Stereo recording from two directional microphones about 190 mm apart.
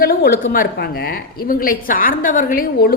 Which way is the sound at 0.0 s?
50° left (ahead or behind).